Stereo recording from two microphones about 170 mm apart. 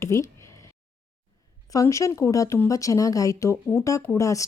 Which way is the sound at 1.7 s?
20° left (ahead or behind).